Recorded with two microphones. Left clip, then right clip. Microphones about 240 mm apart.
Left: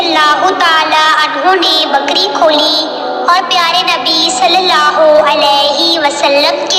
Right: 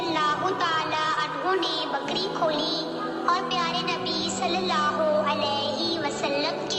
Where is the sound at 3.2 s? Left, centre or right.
Left.